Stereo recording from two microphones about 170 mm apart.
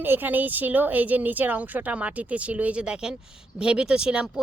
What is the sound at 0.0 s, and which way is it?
Speech, 10° right (ahead or behind).